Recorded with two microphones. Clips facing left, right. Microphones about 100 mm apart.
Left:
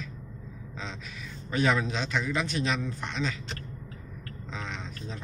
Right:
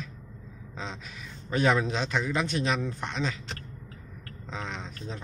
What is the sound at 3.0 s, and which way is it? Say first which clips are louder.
Speech: right 1 dB; 20° right (ahead or behind).